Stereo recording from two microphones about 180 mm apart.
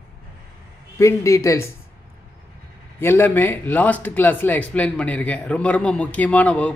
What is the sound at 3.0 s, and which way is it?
Speech, 10° left (ahead or behind).